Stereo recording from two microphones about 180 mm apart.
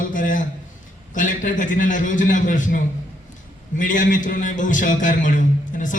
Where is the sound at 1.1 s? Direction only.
45° left (ahead or behind).